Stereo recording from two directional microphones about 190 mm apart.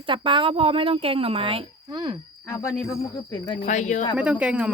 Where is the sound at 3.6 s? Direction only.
40° left (ahead or behind).